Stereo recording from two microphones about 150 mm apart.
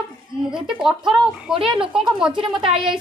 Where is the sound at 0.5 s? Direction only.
5° right (ahead or behind).